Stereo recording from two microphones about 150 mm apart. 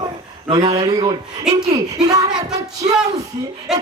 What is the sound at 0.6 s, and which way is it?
Speech, 45° right (ahead or behind).